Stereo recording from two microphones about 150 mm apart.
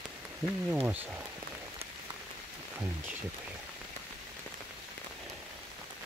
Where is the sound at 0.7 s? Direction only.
10° right (ahead or behind).